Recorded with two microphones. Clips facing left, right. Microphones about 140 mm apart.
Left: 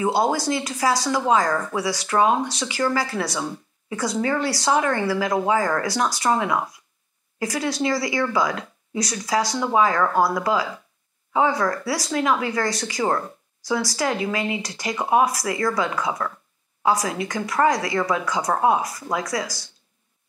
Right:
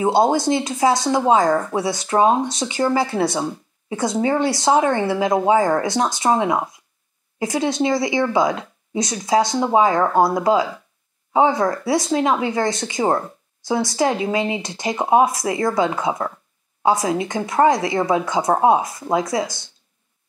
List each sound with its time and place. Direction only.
0.0 s speech: 25° right (ahead or behind)